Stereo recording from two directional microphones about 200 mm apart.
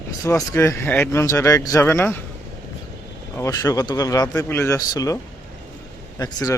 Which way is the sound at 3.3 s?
15° left (ahead or behind).